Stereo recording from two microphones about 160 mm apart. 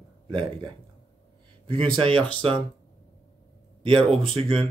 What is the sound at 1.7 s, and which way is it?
Speech, 35° right (ahead or behind).